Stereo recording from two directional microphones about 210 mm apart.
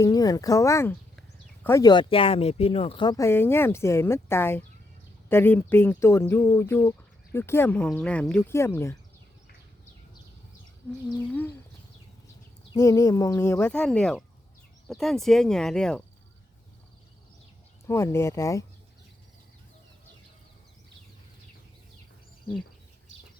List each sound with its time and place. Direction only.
0.0 s speech: 15° left (ahead or behind)
12.7 s speech: 15° left (ahead or behind)
17.8 s speech: 15° left (ahead or behind)